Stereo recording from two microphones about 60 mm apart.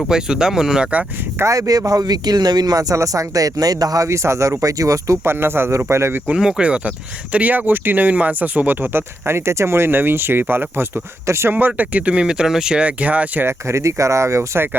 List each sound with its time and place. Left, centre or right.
0.1 s speech: centre
1.5 s speech: right
4.6 s speech: right
5.2 s speech: right
6.3 s speech: centre; by 11.5 s right
11.5 s speech: right
13.0 s speech: right
13.4 s speech: right